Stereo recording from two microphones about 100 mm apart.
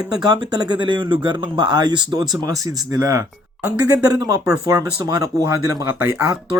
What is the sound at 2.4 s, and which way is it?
Speech, 35° right (ahead or behind).